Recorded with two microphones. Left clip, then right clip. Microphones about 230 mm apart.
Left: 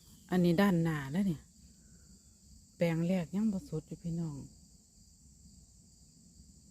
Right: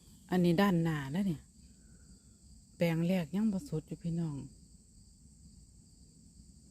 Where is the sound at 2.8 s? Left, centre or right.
Centre.